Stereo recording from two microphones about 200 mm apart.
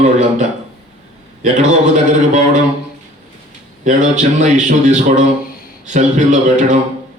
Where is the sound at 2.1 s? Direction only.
40° right (ahead or behind).